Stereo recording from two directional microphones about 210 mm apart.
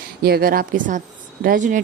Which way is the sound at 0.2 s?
45° right (ahead or behind).